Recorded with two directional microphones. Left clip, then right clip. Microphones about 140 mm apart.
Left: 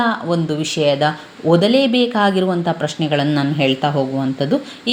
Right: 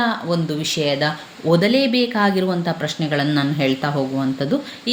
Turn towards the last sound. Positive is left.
turn(degrees=10)  # may be behind; listen again after turning